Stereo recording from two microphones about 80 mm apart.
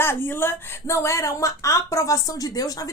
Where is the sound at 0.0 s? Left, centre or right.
Left.